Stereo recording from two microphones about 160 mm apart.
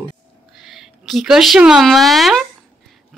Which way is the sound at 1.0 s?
Centre (ahead or behind).